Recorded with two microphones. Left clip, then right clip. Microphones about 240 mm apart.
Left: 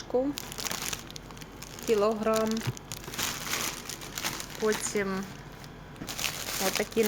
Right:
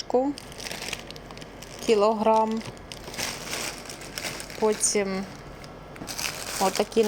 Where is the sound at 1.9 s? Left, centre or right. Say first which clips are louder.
Right 5 dB; centre.